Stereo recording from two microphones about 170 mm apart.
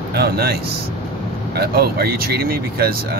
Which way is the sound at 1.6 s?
65° right (ahead or behind).